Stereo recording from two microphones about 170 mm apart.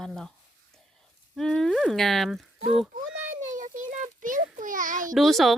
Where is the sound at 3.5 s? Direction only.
50° right (ahead or behind).